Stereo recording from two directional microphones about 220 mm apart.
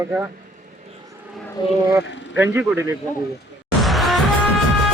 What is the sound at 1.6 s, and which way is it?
Speech, 20° left (ahead or behind).